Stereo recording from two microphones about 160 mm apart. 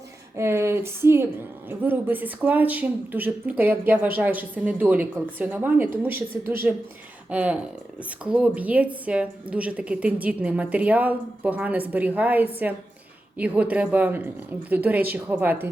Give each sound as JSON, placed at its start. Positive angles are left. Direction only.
{"t": 0.3, "sound": "a woman's voice", "side_deg": -15}